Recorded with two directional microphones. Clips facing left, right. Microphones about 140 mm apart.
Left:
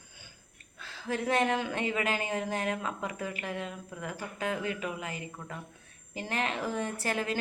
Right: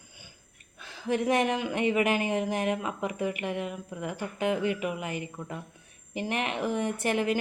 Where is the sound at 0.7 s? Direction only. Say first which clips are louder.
Right 5 dB; 20° right (ahead or behind).